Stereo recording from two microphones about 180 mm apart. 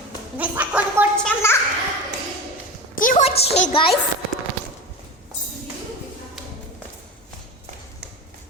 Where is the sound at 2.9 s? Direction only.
50° left (ahead or behind).